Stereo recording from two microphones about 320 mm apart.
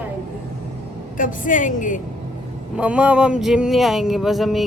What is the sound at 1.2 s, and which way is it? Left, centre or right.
Speech, left.